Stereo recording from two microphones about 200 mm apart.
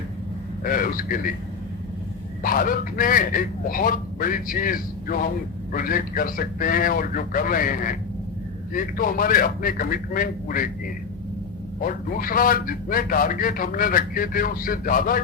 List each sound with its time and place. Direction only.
0.6 s a man's voice: 45° left (ahead or behind)
2.4 s a man's voice: 45° left (ahead or behind)
11.8 s a man's voice: 45° left (ahead or behind)